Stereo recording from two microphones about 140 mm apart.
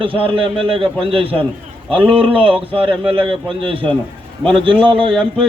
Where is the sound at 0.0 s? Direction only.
40° right (ahead or behind).